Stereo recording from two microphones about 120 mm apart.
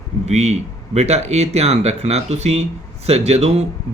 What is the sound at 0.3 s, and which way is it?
Speech, 70° right (ahead or behind).